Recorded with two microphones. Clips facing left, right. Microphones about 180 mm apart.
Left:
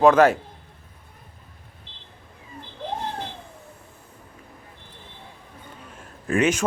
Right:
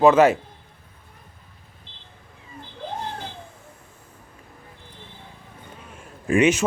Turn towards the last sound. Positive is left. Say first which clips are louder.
# right 3 dB
turn(degrees=-10)  # may be behind; listen again after turning